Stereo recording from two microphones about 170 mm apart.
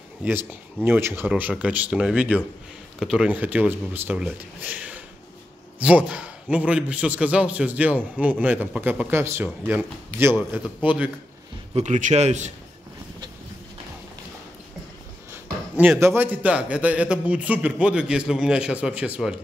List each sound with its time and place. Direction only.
0.2 s a man's voice: 10° right (ahead or behind)
11.7 s a man's voice: 45° right (ahead or behind)
16.0 s a man's voice: 15° right (ahead or behind)